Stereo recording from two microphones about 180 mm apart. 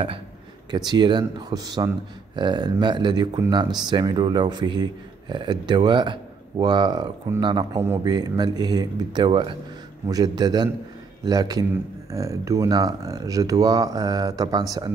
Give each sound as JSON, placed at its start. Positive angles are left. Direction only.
{"t": 0.7, "sound": "speech", "side_deg": -25}